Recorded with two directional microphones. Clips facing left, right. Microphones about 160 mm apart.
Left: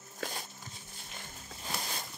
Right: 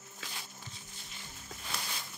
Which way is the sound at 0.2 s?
45° left (ahead or behind).